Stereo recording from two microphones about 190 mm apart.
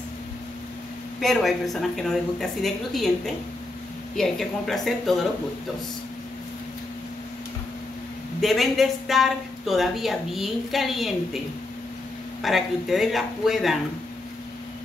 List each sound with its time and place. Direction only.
1.2 s speech: centre (ahead or behind)
4.2 s speech: centre (ahead or behind)
8.4 s speech: centre (ahead or behind)
12.4 s speech: centre (ahead or behind)